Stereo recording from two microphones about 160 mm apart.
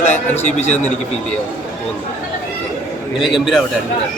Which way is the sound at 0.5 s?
45° left (ahead or behind).